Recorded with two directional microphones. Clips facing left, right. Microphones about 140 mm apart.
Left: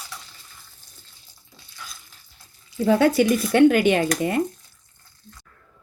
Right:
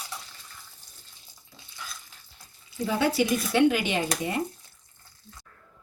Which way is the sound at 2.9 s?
55° left (ahead or behind).